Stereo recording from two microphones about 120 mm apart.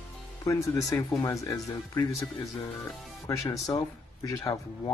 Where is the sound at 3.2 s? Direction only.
30° left (ahead or behind).